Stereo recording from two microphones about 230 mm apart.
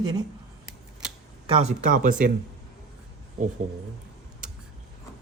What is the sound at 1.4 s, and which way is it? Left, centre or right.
Speech, right.